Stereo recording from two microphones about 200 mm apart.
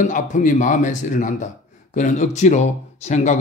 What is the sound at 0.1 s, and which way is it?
Speech, 40° left (ahead or behind).